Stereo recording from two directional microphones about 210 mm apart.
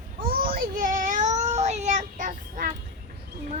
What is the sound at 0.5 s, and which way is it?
Cat, 40° right (ahead or behind).